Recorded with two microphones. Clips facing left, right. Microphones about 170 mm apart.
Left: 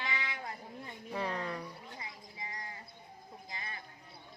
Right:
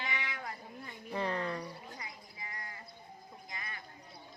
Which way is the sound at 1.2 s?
10° left (ahead or behind).